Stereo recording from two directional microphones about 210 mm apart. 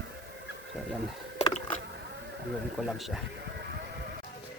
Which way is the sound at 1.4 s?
30° left (ahead or behind).